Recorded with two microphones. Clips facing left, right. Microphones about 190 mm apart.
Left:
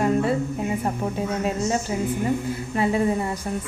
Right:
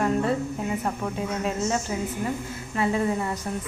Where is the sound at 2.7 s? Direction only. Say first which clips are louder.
Left 2 dB; 20° left (ahead or behind).